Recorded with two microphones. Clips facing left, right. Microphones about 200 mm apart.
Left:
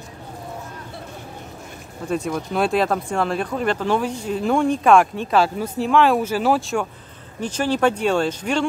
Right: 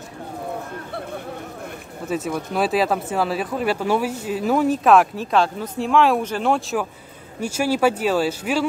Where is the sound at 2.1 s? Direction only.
5° right (ahead or behind).